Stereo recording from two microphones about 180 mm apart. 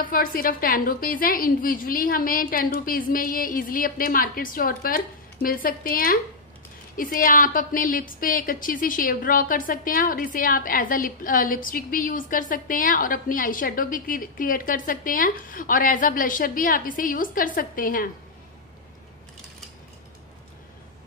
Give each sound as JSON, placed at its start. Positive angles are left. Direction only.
{"t": 0.0, "sound": "a woman's voice", "side_deg": 50}